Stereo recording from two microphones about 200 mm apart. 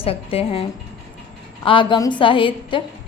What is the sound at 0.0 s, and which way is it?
A woman's voice, 30° left (ahead or behind).